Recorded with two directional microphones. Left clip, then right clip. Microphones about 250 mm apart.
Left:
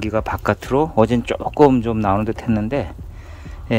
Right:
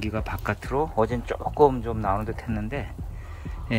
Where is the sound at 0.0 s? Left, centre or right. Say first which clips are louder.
Left 10 dB; centre.